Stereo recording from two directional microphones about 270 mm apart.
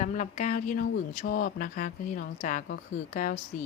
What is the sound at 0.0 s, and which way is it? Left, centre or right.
Speech, left.